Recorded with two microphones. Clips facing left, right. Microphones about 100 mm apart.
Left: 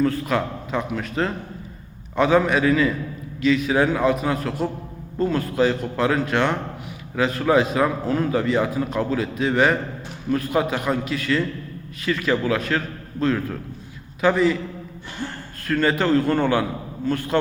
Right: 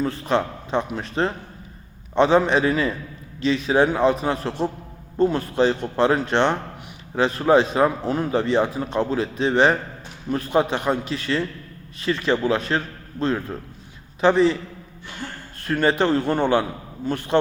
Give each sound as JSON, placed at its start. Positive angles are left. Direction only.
{"t": 0.0, "sound": "a man's voice", "side_deg": -25}
{"t": 15.6, "sound": "a man's voice", "side_deg": -20}